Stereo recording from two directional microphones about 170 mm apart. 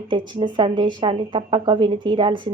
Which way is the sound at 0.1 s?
30° right (ahead or behind).